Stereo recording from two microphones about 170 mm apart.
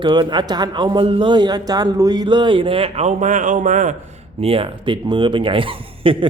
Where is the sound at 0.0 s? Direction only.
25° right (ahead or behind); by 3.9 s 45° right (ahead or behind).